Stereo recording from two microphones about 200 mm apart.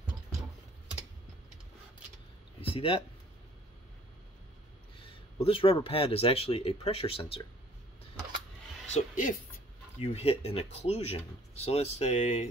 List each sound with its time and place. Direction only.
2.6 s a sound: 30° left (ahead or behind)
5.4 s speech: 30° left (ahead or behind)
8.9 s speech: 40° left (ahead or behind)
9.9 s speech: 30° left (ahead or behind)